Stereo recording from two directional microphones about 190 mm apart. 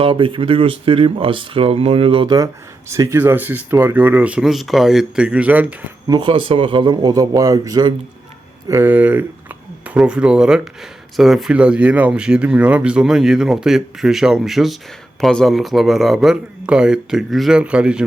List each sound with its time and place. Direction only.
0.0 s speech: 25° right (ahead or behind); by 5.7 s 10° right (ahead or behind)
6.1 s speech: 25° right (ahead or behind)
8.7 s speech: 10° right (ahead or behind)